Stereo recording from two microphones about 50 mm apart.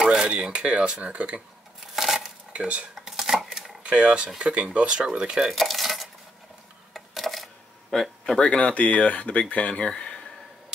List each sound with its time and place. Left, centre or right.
0.0 s speech: centre
2.0 s dishes: centre
2.5 s speech: right
2.9 s chopping: centre
3.9 s speech: right
5.5 s cutlery: centre
6.9 s a sound: centre
7.9 s speech: centre
8.4 s speech: left
9.8 s a sound: centre